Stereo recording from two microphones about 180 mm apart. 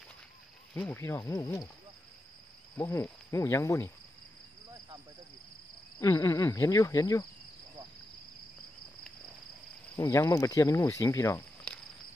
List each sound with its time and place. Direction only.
0.7 s cricket: 10° left (ahead or behind)
2.8 s cricket: 15° left (ahead or behind)
5.9 s cricket: 15° left (ahead or behind)
9.9 s speech: 15° left (ahead or behind)